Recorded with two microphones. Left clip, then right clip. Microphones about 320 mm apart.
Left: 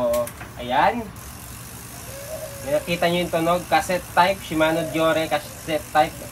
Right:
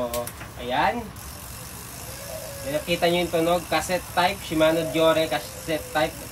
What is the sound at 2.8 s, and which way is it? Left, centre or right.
Speech, centre.